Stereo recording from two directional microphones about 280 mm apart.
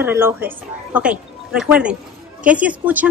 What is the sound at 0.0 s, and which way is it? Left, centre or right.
A woman's voice, centre.